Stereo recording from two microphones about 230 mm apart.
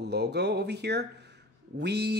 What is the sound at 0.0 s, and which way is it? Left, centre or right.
Speech, right.